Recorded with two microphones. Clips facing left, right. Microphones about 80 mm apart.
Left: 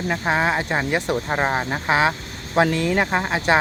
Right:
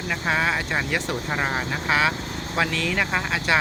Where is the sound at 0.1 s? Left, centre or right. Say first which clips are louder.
Left 2 dB; left.